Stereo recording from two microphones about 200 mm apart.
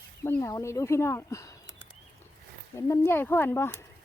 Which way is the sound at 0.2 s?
15° left (ahead or behind).